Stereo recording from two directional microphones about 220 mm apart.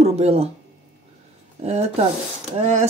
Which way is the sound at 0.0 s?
30° right (ahead or behind).